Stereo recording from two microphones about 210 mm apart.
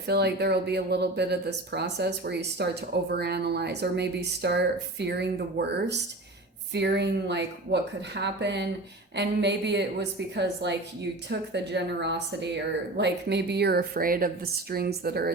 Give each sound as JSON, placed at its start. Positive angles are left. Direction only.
{"t": 0.1, "sound": "speech", "side_deg": -50}